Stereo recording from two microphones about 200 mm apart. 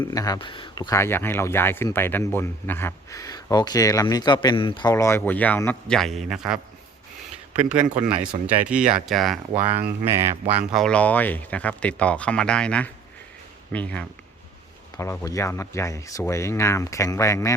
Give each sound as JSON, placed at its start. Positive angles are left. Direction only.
{"t": 0.0, "sound": "speech", "side_deg": 20}
{"t": 7.6, "sound": "speech", "side_deg": -5}
{"t": 10.7, "sound": "speech", "side_deg": 0}